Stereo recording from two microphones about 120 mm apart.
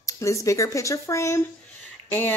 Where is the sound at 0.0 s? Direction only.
25° left (ahead or behind).